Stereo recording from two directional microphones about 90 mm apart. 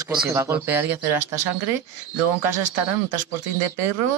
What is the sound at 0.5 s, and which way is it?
Speech, 20° right (ahead or behind).